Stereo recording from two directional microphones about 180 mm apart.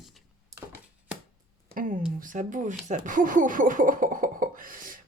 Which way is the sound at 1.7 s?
50° right (ahead or behind).